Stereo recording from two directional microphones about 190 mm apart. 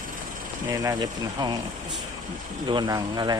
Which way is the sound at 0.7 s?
20° right (ahead or behind).